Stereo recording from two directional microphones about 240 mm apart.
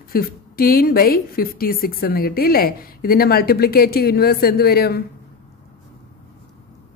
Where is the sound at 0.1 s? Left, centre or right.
Left.